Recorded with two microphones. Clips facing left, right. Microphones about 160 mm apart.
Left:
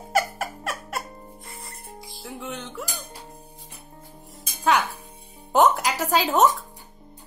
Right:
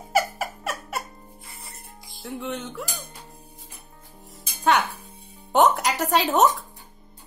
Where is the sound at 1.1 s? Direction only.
35° left (ahead or behind).